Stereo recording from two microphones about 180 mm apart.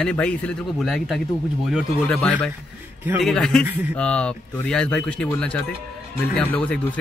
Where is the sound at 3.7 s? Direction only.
10° right (ahead or behind).